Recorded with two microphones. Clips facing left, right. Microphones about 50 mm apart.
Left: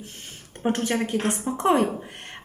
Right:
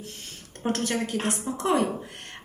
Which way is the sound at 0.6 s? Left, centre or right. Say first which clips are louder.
Left 3 dB; left.